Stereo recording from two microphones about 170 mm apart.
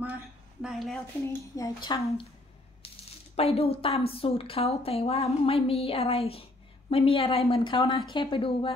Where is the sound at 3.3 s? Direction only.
35° left (ahead or behind).